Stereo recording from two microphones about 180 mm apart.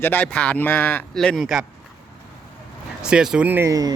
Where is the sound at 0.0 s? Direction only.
10° left (ahead or behind).